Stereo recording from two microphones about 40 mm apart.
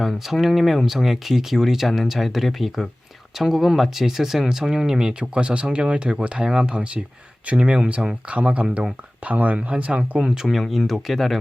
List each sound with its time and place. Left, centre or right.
0.0 s speech: centre; by 10.2 s right
10.2 s speech: centre
10.8 s speech: centre